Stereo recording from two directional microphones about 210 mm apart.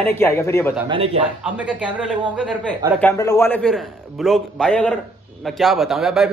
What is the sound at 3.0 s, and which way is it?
A man's voice, 15° left (ahead or behind).